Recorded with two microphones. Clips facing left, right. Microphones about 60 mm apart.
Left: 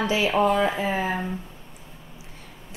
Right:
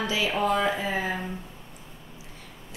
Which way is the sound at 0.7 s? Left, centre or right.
Left.